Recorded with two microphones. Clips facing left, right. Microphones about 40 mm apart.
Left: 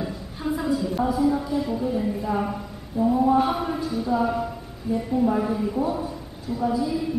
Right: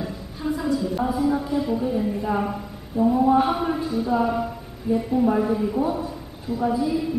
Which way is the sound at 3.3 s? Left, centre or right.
Centre.